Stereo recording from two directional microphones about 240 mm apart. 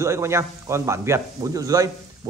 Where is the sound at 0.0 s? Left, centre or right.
Centre.